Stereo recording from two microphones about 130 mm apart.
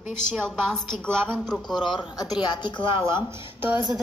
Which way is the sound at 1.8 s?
40° left (ahead or behind).